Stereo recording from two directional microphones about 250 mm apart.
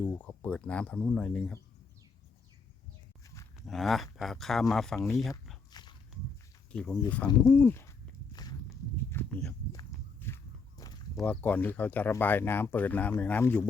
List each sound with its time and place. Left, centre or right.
0.2 s speech: centre
3.7 s speech: centre
5.7 s dog: centre
6.7 s speech: centre
7.4 s walk: centre